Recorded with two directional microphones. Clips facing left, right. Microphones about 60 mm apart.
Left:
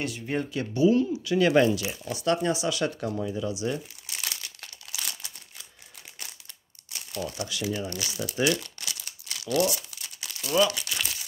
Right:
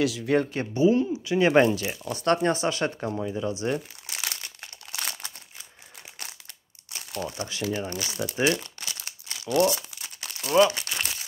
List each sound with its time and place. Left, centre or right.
0.0 s speech: right
0.4 s speech: right
0.7 s speech: right
2.2 s speech: right
3.2 s speech: right
3.5 s speech: right
4.3 s crumpling: right
4.9 s crumpling: right
7.2 s speech: right
9.3 s crumpling: right